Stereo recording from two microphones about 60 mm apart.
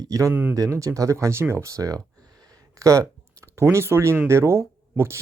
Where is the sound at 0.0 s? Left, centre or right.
Right.